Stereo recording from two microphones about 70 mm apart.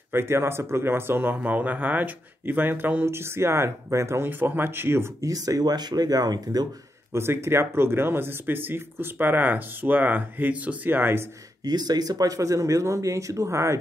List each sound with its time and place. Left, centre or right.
0.1 s speech: right
5.2 s speech: right
7.1 s speech: right
11.6 s speech: right